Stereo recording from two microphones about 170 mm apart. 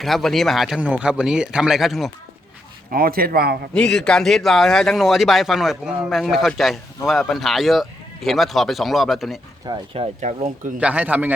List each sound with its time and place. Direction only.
0.0 s speech: centre (ahead or behind)
2.9 s speech: 60° right (ahead or behind)
3.8 s speech: 5° left (ahead or behind)
9.6 s speech: 30° right (ahead or behind)
10.2 s speech: 45° right (ahead or behind)
10.8 s a man's voice: 5° right (ahead or behind)